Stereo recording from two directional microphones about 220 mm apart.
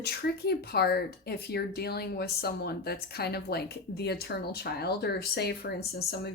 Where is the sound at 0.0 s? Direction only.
45° left (ahead or behind).